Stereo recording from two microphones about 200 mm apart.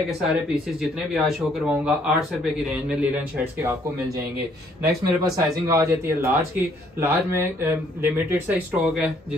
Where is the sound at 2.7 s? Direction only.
5° right (ahead or behind).